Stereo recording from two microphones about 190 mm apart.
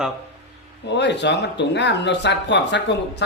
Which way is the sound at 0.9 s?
65° left (ahead or behind).